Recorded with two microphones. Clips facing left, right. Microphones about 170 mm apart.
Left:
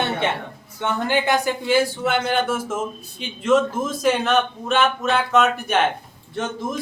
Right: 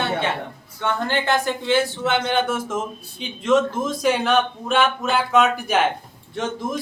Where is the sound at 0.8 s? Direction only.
15° left (ahead or behind).